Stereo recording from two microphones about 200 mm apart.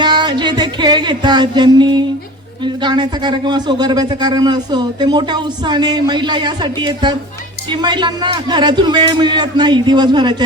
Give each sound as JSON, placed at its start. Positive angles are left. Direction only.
{"t": 0.0, "sound": "music", "side_deg": -20}
{"t": 2.8, "sound": "a man's voice", "side_deg": -20}